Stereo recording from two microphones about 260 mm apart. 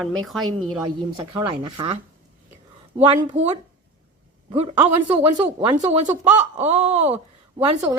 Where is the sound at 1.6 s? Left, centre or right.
Centre.